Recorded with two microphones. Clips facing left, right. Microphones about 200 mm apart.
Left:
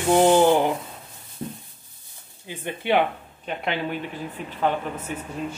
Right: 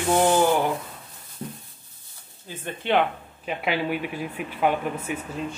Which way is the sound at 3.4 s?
5° right (ahead or behind).